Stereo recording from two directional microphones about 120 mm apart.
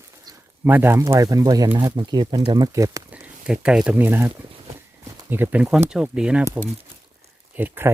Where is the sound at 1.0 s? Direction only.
30° right (ahead or behind).